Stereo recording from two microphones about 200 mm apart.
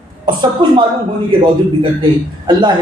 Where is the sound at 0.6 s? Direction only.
25° right (ahead or behind).